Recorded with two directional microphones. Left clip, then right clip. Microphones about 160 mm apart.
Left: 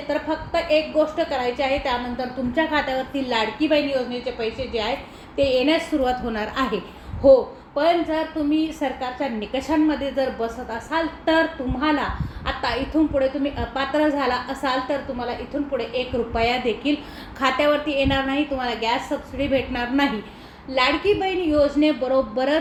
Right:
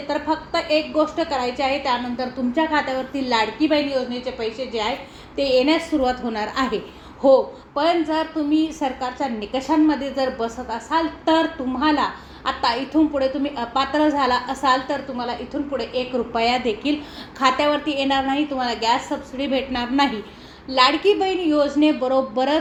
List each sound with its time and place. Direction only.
0.1 s a woman's voice: 40° right (ahead or behind)
7.8 s a woman's voice: 40° right (ahead or behind)